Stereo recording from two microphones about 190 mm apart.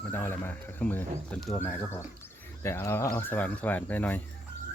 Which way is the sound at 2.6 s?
15° left (ahead or behind).